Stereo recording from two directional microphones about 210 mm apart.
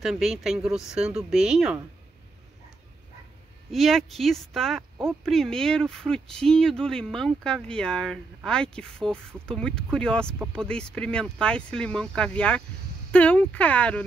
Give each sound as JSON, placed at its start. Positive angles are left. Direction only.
{"t": 0.0, "sound": "speech", "side_deg": 0}
{"t": 3.7, "sound": "speech", "side_deg": 0}